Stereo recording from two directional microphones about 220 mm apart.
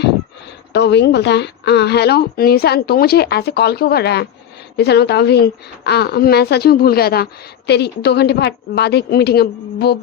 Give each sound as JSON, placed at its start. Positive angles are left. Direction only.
{"t": 0.7, "sound": "a woman's voice", "side_deg": 50}